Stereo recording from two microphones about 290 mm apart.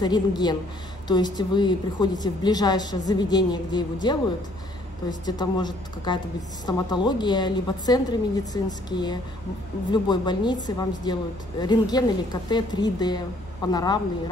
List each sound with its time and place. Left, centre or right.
0.0 s a woman's voice: centre
5.2 s a woman's voice: centre